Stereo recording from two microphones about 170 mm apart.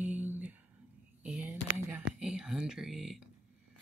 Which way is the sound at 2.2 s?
5° right (ahead or behind).